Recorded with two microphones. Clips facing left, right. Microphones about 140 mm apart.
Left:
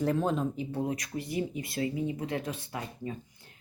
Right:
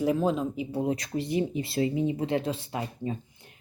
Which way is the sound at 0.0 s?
5° right (ahead or behind).